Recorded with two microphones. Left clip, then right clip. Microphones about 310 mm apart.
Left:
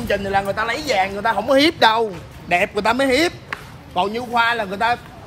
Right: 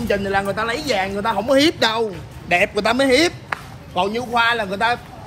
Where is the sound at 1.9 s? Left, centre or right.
Centre.